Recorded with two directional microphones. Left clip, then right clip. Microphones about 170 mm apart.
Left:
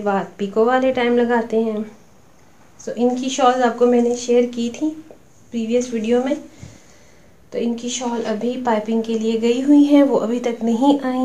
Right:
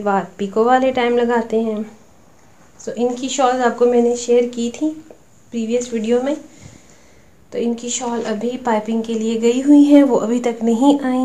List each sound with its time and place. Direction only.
0.0 s speech: 30° right (ahead or behind)
2.8 s a woman's voice: 25° right (ahead or behind)
7.5 s a woman's voice: 25° right (ahead or behind)